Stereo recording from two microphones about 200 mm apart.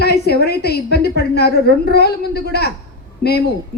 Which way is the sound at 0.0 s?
55° left (ahead or behind).